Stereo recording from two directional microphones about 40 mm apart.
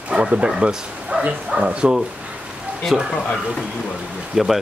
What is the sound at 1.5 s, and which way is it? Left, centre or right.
Speech, right.